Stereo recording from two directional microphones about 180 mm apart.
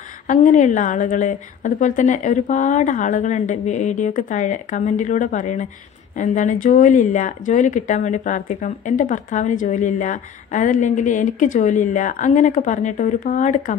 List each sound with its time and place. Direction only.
0.3 s speech: 45° left (ahead or behind)